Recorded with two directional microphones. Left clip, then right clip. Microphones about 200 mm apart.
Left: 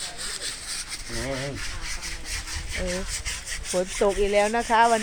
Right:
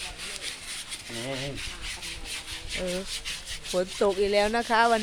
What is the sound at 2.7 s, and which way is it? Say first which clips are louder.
Rub: left 1 dB; 20° left (ahead or behind).